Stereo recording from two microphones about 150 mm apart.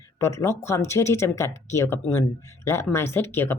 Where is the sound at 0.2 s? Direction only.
20° left (ahead or behind).